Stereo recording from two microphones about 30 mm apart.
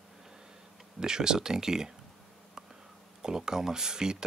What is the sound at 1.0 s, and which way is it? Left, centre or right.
Speech, right.